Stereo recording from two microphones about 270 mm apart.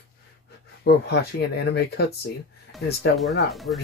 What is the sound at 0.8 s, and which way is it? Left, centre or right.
Speech, left.